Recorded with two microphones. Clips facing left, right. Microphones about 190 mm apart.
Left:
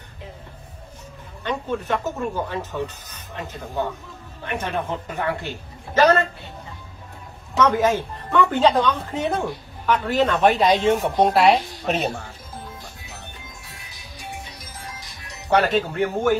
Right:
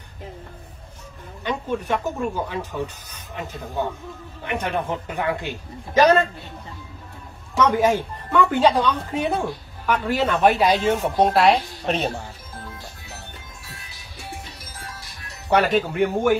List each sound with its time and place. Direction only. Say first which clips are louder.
1.4 s speech: even; 15° right (ahead or behind)
7.5 s speech: even; 15° right (ahead or behind)
14.9 s music: left 1 dB; 15° left (ahead or behind)
15.5 s speech: even; 10° right (ahead or behind)